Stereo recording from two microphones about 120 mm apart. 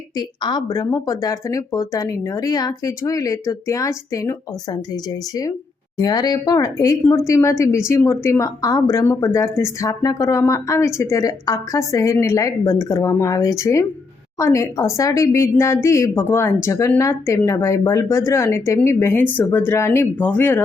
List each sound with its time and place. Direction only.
0.2 s a woman's voice: 35° left (ahead or behind); by 20.6 s 15° left (ahead or behind)